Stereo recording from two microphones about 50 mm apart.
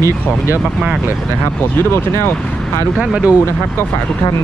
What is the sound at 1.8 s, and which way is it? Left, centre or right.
Speech, left.